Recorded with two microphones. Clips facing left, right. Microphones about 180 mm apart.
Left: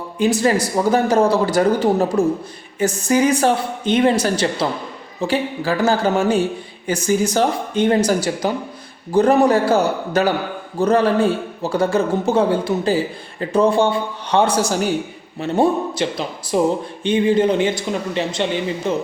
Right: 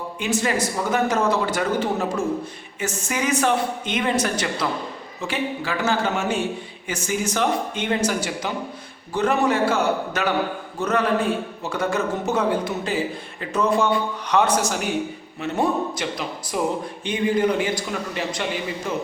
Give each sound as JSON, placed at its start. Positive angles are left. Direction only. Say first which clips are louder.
{"t": 0.2, "sound": "a man's voice", "louder": "left 7 dB", "side_deg": 35}